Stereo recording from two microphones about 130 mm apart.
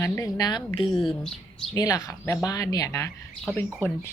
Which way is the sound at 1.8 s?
30° left (ahead or behind).